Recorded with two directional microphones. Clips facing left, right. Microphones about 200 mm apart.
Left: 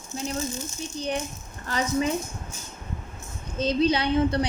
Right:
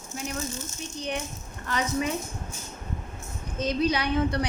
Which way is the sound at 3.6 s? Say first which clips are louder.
Left 3 dB; 30° left (ahead or behind).